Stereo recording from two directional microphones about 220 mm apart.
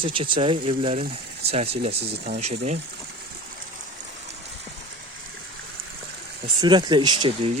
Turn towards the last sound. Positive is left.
turn(degrees=-20)  # may be behind; listen again after turning